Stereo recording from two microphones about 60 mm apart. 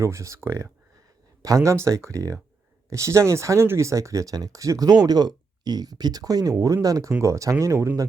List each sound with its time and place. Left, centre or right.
0.0 s speech: right
1.4 s speech: right
1.7 s speech: right
7.1 s speech: right